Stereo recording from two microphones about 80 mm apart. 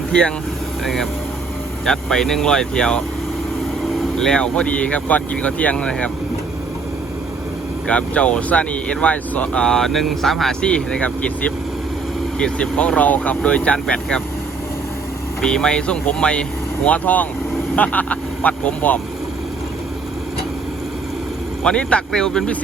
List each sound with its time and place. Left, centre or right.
0.1 s speech: centre
1.8 s speech: centre
7.9 s speech: centre
12.4 s speech: centre
15.4 s speech: centre
21.6 s speech: centre